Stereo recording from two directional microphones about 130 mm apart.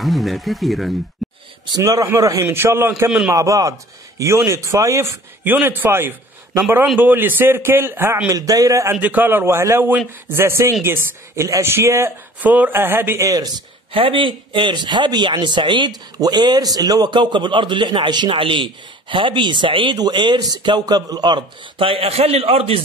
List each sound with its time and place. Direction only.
0.0 s speech: centre (ahead or behind)
1.8 s a man's voice: 20° right (ahead or behind)
3.1 s speech: 5° right (ahead or behind)
3.3 s a man's voice: 25° right (ahead or behind)
9.0 s a man's voice: 15° right (ahead or behind)
13.9 s a man's voice: 40° right (ahead or behind)